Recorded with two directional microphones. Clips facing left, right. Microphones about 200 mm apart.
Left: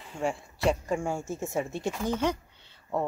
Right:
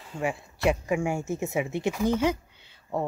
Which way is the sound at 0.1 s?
5° right (ahead or behind).